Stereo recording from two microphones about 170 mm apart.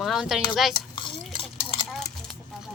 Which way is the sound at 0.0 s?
Centre (ahead or behind).